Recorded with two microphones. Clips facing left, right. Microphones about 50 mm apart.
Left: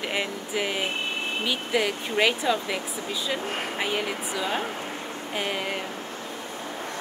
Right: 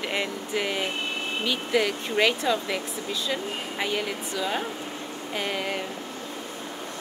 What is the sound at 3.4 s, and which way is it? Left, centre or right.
Speech, left.